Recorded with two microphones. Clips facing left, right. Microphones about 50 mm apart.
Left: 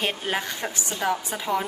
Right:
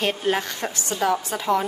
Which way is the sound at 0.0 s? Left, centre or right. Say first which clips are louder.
Right 4 dB; centre.